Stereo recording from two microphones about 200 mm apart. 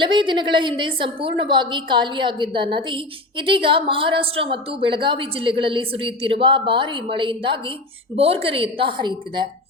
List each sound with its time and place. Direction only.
0.0 s a woman's voice: 25° right (ahead or behind)